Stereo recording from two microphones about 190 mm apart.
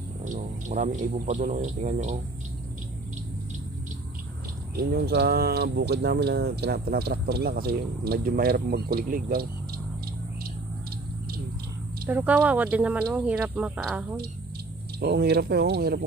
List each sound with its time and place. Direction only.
0.2 s a man's voice: 40° right (ahead or behind)
4.7 s speech: 55° right (ahead or behind)
12.1 s speech: 10° right (ahead or behind)
15.0 s speech: 55° right (ahead or behind)